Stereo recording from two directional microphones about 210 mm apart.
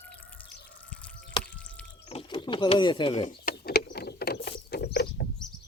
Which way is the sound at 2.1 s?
25° left (ahead or behind).